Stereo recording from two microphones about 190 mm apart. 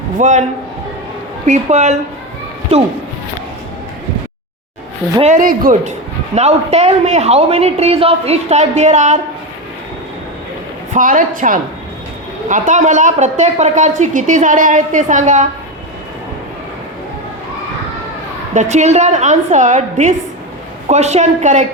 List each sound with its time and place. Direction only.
0.2 s a woman's voice: 40° right (ahead or behind)
1.5 s a woman's voice: 35° right (ahead or behind)
5.2 s a woman's voice: 40° right (ahead or behind)
10.9 s a woman's voice: 45° right (ahead or behind)
18.5 s a woman's voice: 40° right (ahead or behind)